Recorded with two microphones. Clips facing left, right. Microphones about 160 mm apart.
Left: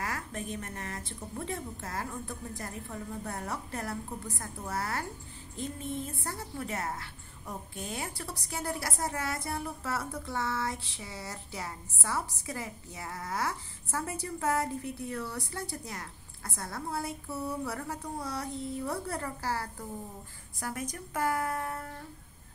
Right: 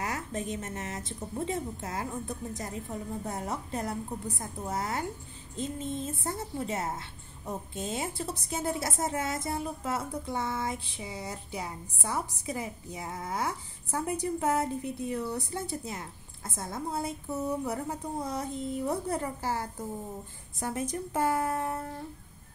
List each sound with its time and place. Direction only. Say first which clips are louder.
0.0 s a woman's voice: right 3 dB; 20° right (ahead or behind)